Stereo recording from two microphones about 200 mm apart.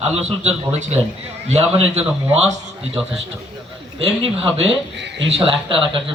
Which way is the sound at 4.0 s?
30° right (ahead or behind).